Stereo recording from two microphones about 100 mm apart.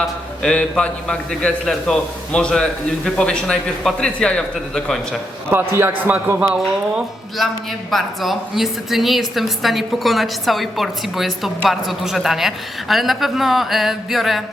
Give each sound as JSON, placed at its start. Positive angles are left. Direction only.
{"t": 0.0, "sound": "a man's voice", "side_deg": 10}
{"t": 5.5, "sound": "a man's voice", "side_deg": -25}
{"t": 7.3, "sound": "a woman's voice", "side_deg": 0}